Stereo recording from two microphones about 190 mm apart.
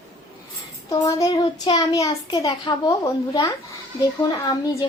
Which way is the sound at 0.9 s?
20° left (ahead or behind).